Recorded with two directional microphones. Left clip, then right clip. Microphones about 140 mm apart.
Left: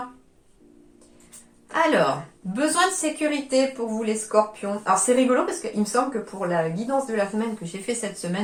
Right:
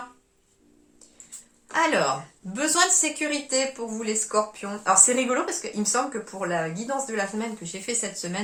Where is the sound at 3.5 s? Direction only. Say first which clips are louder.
Left 4 dB; 25° right (ahead or behind).